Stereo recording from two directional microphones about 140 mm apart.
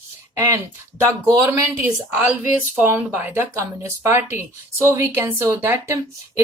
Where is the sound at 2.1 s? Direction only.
10° right (ahead or behind).